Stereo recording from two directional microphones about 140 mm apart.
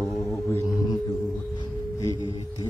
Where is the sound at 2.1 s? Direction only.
35° right (ahead or behind).